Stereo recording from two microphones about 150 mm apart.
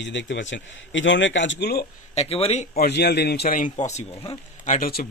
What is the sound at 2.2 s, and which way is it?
Speech, 40° left (ahead or behind).